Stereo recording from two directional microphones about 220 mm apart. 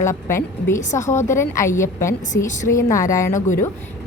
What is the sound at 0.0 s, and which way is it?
A woman's voice, 10° left (ahead or behind).